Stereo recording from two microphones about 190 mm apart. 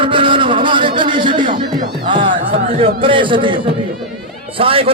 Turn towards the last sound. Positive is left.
turn(degrees=-30)  # may be behind; listen again after turning